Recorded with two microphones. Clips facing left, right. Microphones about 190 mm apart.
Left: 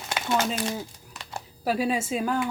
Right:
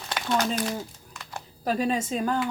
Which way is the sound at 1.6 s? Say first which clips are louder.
Even; 10° left (ahead or behind).